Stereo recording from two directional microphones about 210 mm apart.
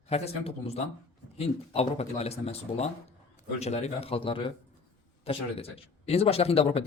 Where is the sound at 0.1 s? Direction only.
30° left (ahead or behind).